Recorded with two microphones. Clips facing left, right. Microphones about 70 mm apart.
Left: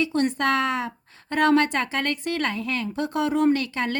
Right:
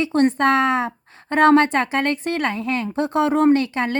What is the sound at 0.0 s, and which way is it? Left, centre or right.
A woman's voice, right.